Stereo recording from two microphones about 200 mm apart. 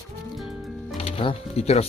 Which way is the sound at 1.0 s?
25° left (ahead or behind).